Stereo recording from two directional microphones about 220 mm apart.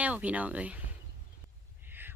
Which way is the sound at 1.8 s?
10° right (ahead or behind).